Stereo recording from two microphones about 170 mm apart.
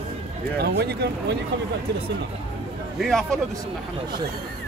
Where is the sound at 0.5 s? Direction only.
70° right (ahead or behind).